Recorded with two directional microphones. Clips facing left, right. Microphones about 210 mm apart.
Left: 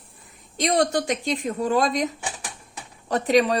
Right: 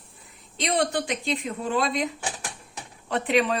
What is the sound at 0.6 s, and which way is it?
A woman's voice, 40° left (ahead or behind).